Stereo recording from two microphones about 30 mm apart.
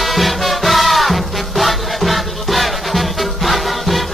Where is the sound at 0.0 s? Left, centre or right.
Centre.